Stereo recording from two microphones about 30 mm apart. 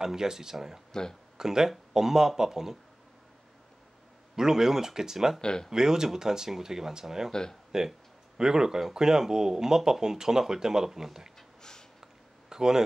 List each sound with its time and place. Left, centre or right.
0.0 s speech: centre
4.4 s speech: centre
5.4 s speech: left
5.7 s speech: centre
12.4 s speech: right